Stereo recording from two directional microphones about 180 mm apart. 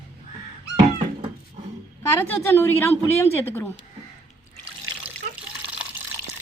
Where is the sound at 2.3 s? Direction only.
15° left (ahead or behind).